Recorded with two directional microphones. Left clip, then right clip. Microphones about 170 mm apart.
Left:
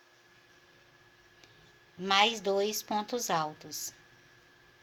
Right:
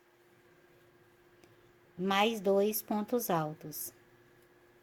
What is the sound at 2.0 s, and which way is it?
A woman's voice, 50° right (ahead or behind).